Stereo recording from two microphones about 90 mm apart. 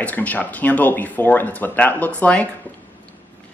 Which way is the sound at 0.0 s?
15° left (ahead or behind).